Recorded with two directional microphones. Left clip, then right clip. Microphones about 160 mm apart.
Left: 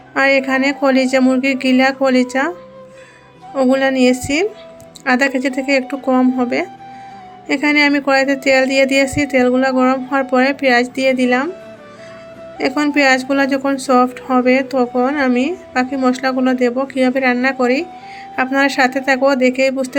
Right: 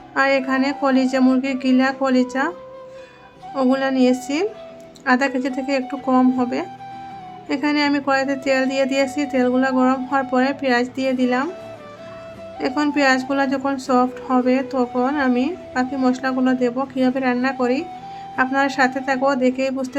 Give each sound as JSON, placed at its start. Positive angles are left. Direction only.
{"t": 0.1, "sound": "speech", "side_deg": 20}
{"t": 12.5, "sound": "speech", "side_deg": 20}